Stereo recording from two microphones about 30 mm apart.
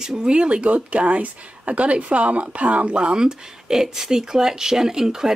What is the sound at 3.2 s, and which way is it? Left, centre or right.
Speech, right.